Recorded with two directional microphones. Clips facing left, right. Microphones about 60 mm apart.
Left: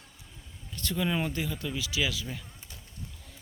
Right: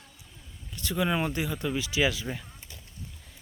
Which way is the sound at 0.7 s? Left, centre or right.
Centre.